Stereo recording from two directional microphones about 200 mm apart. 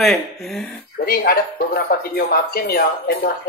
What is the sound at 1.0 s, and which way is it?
Speech, 50° left (ahead or behind).